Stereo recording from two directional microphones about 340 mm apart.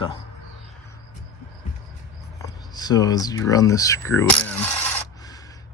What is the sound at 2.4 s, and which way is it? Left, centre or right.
Speech, centre.